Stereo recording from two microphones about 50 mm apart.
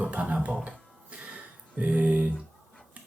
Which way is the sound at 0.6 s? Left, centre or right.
Right.